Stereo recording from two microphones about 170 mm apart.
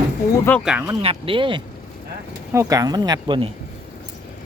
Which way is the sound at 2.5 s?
20° right (ahead or behind).